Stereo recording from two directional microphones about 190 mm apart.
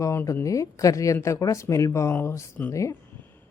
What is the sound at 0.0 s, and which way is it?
Speech, 15° left (ahead or behind).